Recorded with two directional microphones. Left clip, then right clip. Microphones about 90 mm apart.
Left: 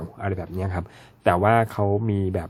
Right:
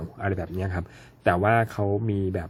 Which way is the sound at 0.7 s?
30° left (ahead or behind).